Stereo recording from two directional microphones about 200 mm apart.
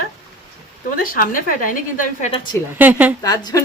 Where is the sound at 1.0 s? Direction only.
45° left (ahead or behind).